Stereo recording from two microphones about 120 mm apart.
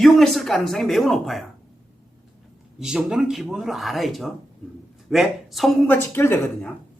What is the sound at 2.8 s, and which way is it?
A man's voice, 5° right (ahead or behind).